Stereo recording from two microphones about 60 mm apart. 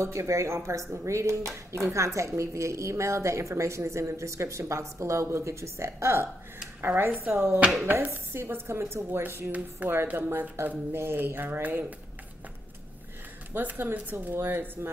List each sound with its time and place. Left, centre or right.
0.0 s speech: right
7.2 s speech: right
13.5 s speech: right